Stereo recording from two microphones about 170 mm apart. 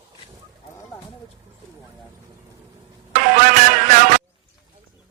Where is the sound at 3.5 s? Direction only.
50° right (ahead or behind).